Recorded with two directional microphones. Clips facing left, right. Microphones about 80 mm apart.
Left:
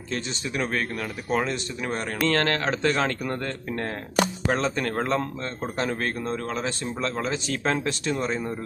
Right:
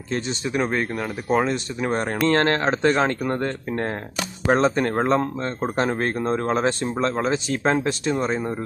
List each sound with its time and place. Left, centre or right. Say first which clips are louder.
0.1 s a man's voice: right 5 dB; right